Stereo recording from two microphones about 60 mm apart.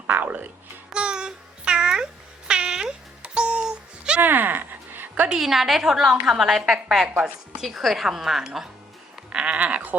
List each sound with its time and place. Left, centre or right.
0.1 s a sound: right
0.9 s babbling: centre
2.5 s music: centre
4.2 s a sound: right
5.3 s a woman's voice: centre
9.1 s sheep: centre